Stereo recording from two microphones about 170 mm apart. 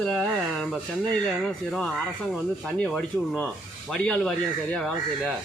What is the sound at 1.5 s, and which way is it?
A man's voice, centre (ahead or behind).